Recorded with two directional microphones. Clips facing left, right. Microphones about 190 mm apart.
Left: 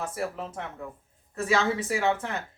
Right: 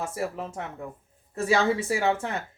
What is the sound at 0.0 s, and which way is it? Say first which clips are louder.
A woman's voice: right 1 dB; 25° right (ahead or behind).